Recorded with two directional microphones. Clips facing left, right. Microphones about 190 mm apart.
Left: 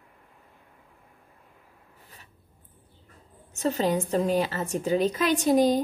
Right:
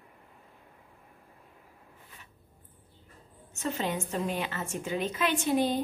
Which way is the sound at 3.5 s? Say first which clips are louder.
Left 7 dB; 35° left (ahead or behind).